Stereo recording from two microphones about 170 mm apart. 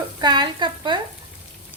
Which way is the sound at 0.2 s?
25° right (ahead or behind).